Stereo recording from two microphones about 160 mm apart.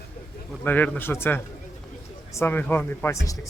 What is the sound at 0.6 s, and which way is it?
A man's voice, 10° left (ahead or behind).